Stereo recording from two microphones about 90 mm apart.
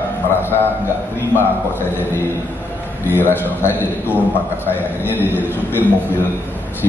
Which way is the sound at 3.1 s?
25° left (ahead or behind).